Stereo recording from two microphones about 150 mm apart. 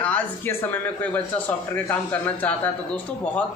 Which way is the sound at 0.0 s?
15° left (ahead or behind).